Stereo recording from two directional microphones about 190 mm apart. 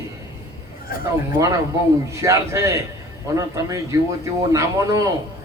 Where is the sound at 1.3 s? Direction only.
20° right (ahead or behind).